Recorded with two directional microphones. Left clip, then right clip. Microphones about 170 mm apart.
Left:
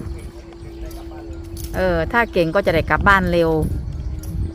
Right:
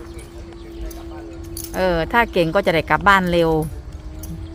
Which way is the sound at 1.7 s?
5° right (ahead or behind).